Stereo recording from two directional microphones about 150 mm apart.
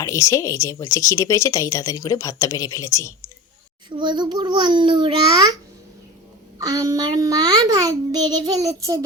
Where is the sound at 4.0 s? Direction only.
30° right (ahead or behind).